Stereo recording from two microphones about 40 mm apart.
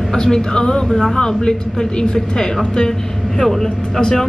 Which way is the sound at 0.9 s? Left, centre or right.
Centre.